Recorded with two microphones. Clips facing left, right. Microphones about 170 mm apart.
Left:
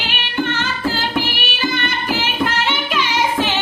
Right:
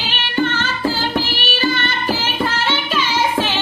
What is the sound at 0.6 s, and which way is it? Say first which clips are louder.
Music: right 1 dB; 15° left (ahead or behind).